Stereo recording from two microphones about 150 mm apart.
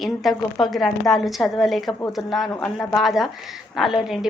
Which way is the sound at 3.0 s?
Centre (ahead or behind).